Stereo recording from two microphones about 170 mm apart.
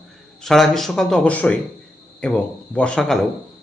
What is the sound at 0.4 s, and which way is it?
A man's voice, centre (ahead or behind).